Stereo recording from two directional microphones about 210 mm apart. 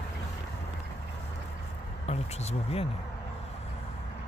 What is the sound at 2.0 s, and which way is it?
Speech, 30° left (ahead or behind).